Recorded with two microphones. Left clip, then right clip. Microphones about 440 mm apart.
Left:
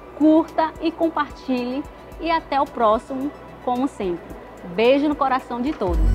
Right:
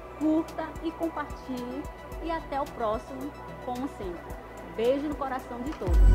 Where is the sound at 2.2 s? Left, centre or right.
Centre.